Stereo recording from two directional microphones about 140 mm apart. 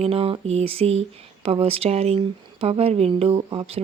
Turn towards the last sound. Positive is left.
turn(degrees=-45)  # may be behind; listen again after turning